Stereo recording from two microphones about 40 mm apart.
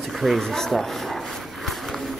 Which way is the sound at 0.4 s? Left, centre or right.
Centre.